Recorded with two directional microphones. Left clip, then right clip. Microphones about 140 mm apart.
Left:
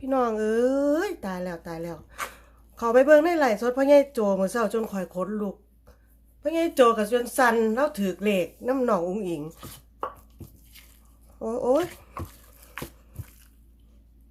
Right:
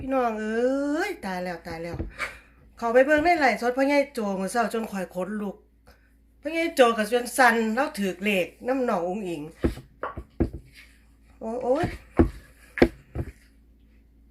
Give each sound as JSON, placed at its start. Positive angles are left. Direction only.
{"t": 0.0, "sound": "speech", "side_deg": 30}
{"t": 5.1, "sound": "a sound", "side_deg": 20}
{"t": 6.4, "sound": "speech", "side_deg": 25}
{"t": 11.3, "sound": "speech", "side_deg": 30}